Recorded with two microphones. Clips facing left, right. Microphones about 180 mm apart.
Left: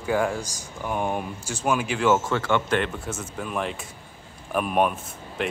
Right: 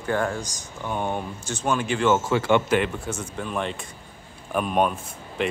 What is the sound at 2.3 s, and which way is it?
Speech, 10° right (ahead or behind).